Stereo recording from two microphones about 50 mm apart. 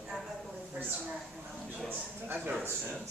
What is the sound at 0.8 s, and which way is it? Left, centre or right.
Speech, right.